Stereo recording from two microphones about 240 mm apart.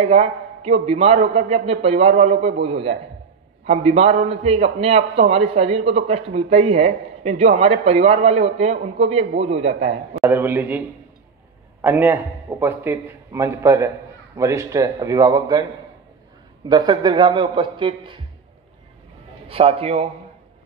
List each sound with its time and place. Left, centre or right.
0.0 s speech: right
10.2 s a man's voice: centre
11.8 s a man's voice: centre
16.6 s speech: centre
19.4 s speech: right